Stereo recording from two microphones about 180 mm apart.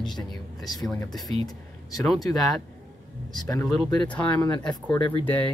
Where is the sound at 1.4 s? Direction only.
20° left (ahead or behind).